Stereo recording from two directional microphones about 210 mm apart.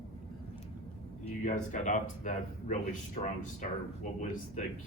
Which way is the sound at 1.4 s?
35° left (ahead or behind).